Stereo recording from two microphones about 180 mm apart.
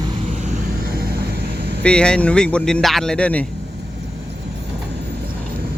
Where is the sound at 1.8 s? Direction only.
5° left (ahead or behind).